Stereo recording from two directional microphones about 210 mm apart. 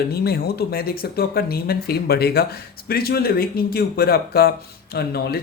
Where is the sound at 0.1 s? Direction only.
50° left (ahead or behind).